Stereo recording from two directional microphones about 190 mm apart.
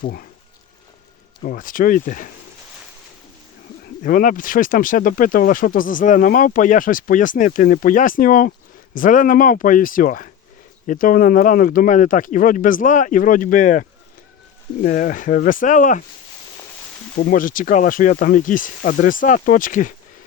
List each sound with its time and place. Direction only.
0.0 s speech: 50° left (ahead or behind)
1.4 s speech: 50° left (ahead or behind)
4.0 s speech: 45° left (ahead or behind)
17.2 s speech: 45° left (ahead or behind)